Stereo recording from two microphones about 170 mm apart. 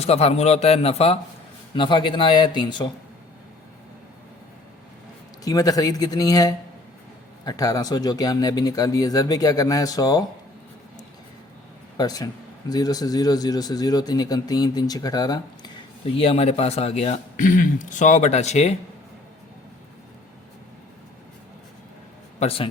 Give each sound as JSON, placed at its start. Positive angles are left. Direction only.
{"t": 0.0, "sound": "a man's voice", "side_deg": 40}
{"t": 5.5, "sound": "speech", "side_deg": 20}
{"t": 11.9, "sound": "speech", "side_deg": 20}
{"t": 22.4, "sound": "a man's voice", "side_deg": 35}